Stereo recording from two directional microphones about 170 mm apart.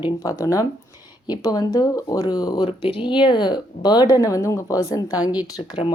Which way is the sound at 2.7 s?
35° left (ahead or behind).